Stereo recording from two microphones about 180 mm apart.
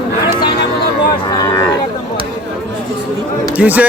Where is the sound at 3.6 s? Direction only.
10° right (ahead or behind).